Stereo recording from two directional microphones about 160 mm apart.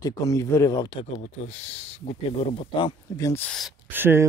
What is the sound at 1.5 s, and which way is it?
Speech, 45° left (ahead or behind).